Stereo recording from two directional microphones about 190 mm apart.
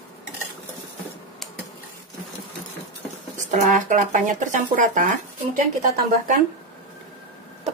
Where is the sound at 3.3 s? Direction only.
40° right (ahead or behind).